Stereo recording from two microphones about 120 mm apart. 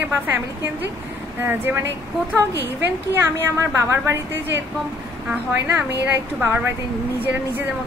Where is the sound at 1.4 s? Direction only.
15° right (ahead or behind).